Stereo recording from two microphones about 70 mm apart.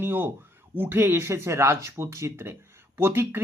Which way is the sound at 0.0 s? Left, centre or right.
Right.